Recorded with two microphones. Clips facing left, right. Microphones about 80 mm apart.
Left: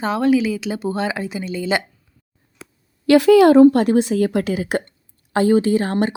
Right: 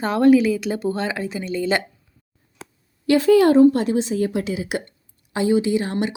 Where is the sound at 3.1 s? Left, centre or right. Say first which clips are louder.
Left 4 dB; left.